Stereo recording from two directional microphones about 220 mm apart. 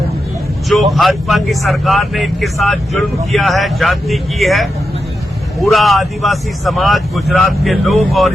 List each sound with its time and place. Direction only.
0.7 s speech: centre (ahead or behind)